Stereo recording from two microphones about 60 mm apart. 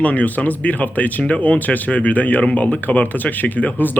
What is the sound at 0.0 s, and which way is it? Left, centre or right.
Speech, left.